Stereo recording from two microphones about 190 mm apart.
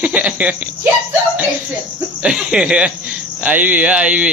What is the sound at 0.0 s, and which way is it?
Speech, 10° right (ahead or behind).